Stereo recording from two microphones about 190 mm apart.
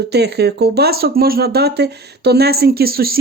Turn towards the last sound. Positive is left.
turn(degrees=-50)  # may be behind; listen again after turning